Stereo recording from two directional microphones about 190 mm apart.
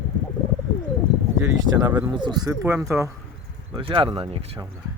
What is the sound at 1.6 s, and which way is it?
Speech, 15° right (ahead or behind).